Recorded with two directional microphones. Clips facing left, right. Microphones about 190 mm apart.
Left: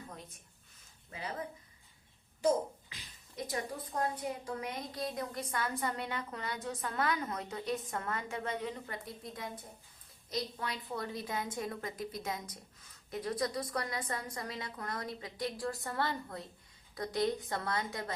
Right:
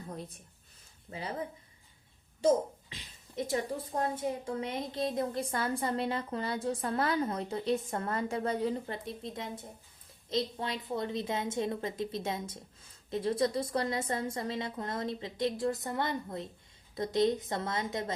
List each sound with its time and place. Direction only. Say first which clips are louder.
1.1 s a woman's voice: right 4 dB; 25° right (ahead or behind)
2.9 s a woman's voice: right 7 dB; 25° right (ahead or behind)